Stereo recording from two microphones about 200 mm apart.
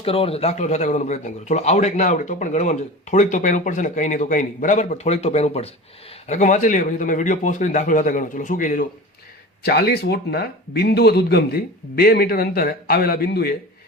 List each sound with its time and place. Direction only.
0.0 s a man's voice: 30° left (ahead or behind)
9.6 s speech: 50° left (ahead or behind)